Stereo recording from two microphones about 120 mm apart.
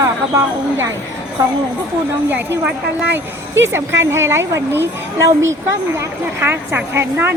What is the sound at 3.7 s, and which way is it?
A woman's voice, 20° right (ahead or behind).